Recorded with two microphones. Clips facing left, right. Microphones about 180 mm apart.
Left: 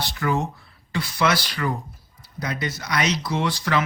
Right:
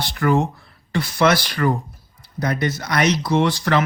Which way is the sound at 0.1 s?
55° right (ahead or behind).